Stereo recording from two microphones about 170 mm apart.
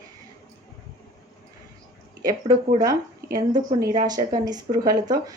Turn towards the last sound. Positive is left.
turn(degrees=-20)  # may be behind; listen again after turning